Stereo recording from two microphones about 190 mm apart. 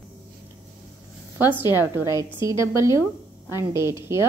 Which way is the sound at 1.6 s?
20° left (ahead or behind).